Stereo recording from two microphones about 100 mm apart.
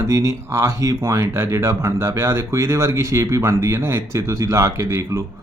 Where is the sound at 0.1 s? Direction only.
30° right (ahead or behind).